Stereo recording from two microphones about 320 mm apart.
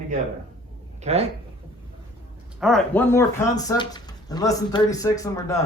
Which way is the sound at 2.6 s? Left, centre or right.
Centre.